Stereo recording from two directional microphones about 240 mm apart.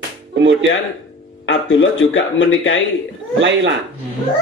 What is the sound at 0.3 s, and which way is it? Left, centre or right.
Music, right.